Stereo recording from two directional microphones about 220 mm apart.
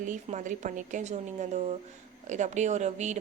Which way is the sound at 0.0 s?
35° right (ahead or behind).